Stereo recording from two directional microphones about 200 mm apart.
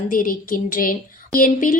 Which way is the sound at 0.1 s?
45° left (ahead or behind).